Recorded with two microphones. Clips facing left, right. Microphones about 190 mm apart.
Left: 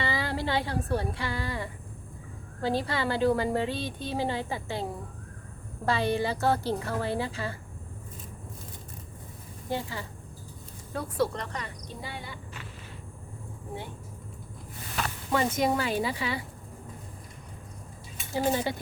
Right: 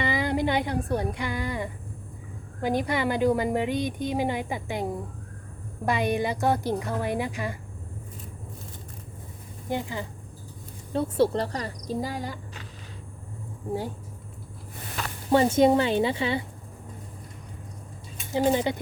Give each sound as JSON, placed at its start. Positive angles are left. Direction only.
{"t": 0.0, "sound": "a woman's voice", "side_deg": -15}
{"t": 9.6, "sound": "a woman's voice", "side_deg": -15}
{"t": 10.9, "sound": "speech", "side_deg": -30}
{"t": 15.3, "sound": "a woman's voice", "side_deg": -30}
{"t": 18.3, "sound": "a woman's voice", "side_deg": -20}